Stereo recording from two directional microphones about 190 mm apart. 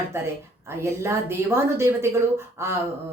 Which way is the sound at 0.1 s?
15° right (ahead or behind).